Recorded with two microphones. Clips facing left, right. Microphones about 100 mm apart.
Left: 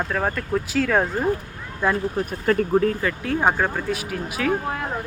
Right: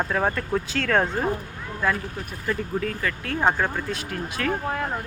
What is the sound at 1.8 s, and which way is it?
Speech, 20° left (ahead or behind).